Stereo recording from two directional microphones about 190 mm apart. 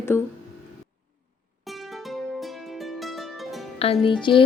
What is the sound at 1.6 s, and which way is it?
Music, centre (ahead or behind).